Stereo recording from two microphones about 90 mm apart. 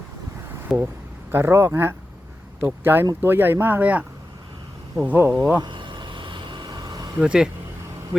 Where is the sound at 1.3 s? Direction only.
30° right (ahead or behind).